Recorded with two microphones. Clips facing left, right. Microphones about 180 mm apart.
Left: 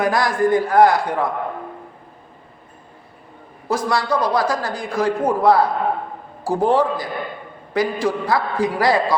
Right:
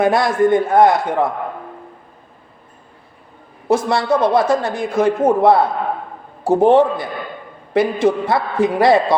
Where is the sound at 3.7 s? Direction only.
25° right (ahead or behind).